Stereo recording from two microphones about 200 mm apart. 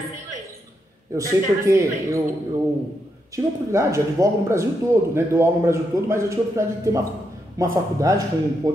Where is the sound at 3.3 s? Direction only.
15° right (ahead or behind).